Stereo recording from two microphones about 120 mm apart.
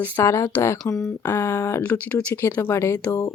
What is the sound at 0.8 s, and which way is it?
Speech, 5° left (ahead or behind).